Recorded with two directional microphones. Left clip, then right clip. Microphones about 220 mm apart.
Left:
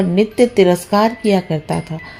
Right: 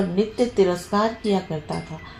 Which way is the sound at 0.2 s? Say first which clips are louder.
Left 8 dB; 50° left (ahead or behind).